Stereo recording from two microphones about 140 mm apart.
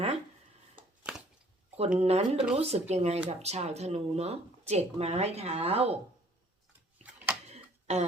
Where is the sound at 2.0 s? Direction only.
50° right (ahead or behind).